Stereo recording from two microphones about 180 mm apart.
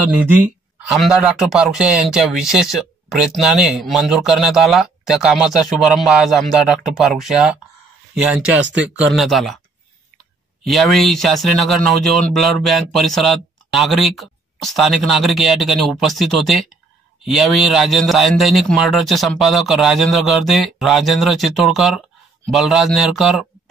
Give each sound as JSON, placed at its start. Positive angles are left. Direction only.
{"t": 0.3, "sound": "speech", "side_deg": -5}
{"t": 8.5, "sound": "speech", "side_deg": -90}
{"t": 8.9, "sound": "speech", "side_deg": -5}
{"t": 10.6, "sound": "speech", "side_deg": 0}